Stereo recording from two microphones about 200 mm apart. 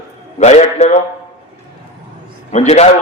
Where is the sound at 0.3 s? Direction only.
35° left (ahead or behind).